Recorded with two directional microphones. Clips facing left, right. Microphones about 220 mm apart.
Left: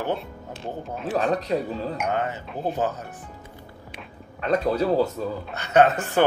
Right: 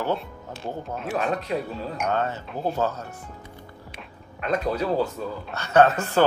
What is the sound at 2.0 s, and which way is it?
Speech, 15° left (ahead or behind).